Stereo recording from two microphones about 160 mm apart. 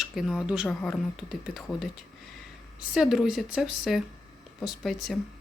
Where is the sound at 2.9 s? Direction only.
Centre (ahead or behind).